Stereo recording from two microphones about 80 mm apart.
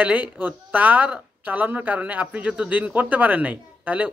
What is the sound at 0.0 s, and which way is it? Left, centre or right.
A man's voice, centre.